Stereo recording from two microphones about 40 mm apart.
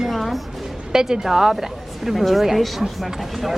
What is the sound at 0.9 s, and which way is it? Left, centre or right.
Speech, centre.